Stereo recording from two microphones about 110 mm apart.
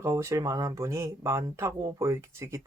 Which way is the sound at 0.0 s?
25° right (ahead or behind).